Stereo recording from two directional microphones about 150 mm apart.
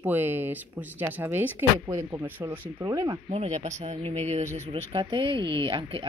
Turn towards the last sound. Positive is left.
turn(degrees=-35)  # may be behind; listen again after turning